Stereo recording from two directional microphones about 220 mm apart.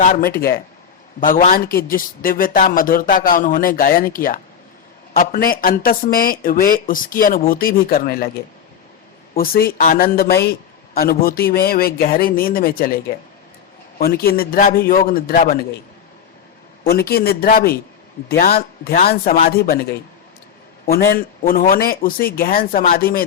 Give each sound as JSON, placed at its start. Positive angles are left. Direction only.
{"t": 0.0, "sound": "speech", "side_deg": 40}
{"t": 9.3, "sound": "speech", "side_deg": 40}
{"t": 16.8, "sound": "a man's voice", "side_deg": 45}